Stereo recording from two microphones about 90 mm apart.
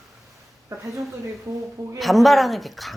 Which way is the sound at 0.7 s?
35° right (ahead or behind).